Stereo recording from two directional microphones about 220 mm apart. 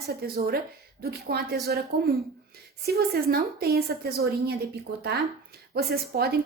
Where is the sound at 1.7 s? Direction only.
45° right (ahead or behind).